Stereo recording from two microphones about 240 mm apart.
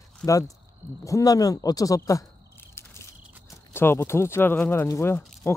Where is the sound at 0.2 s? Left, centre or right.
Centre.